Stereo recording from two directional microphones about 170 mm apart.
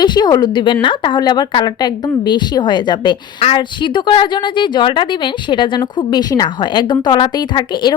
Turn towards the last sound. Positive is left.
turn(degrees=25)  # may be behind; listen again after turning